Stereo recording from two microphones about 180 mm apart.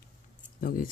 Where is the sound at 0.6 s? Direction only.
50° left (ahead or behind).